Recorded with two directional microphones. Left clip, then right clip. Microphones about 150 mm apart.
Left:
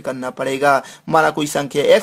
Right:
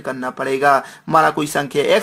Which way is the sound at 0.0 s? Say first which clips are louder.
Even; 35° left (ahead or behind).